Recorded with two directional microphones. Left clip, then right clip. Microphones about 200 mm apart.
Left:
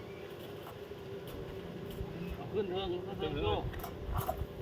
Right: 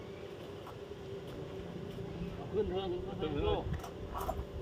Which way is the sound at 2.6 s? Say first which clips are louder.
Even; 35° left (ahead or behind).